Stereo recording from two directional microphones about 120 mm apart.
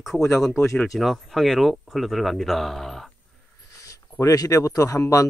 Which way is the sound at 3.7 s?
25° left (ahead or behind).